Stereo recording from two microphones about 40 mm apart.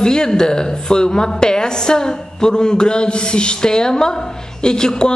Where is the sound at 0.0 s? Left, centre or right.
Centre.